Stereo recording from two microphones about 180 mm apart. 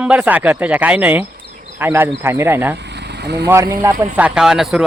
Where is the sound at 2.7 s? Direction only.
70° right (ahead or behind).